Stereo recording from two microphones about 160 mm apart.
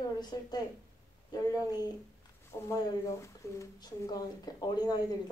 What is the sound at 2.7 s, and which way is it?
Speech, 20° left (ahead or behind).